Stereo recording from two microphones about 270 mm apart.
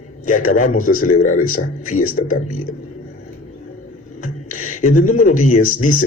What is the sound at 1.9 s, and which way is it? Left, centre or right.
Speech, left.